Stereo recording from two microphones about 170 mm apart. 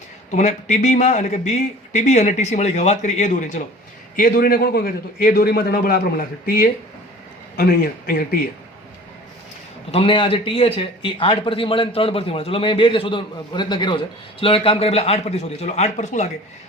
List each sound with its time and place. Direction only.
0.3 s speech: 45° left (ahead or behind)
4.2 s a man's voice: 60° left (ahead or behind)
9.9 s a man's voice: 30° left (ahead or behind)